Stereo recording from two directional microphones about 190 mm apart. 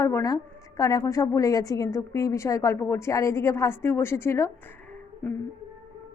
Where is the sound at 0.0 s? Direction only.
15° left (ahead or behind).